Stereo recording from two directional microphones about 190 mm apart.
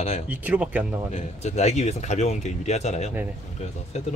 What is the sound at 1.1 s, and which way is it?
Speech, 35° left (ahead or behind).